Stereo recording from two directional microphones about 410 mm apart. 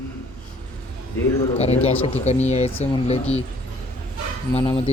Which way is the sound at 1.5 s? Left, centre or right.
Centre.